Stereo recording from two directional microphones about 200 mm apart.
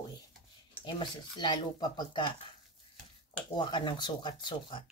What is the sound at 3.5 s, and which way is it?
Speech, 20° left (ahead or behind).